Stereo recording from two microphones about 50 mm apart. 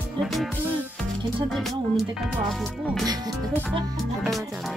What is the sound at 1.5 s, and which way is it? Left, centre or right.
Speech, centre.